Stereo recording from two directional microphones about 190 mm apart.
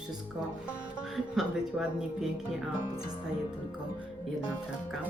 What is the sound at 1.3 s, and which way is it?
Speech, 5° right (ahead or behind).